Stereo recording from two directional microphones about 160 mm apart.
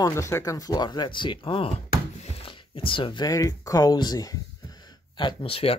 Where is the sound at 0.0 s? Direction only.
20° left (ahead or behind).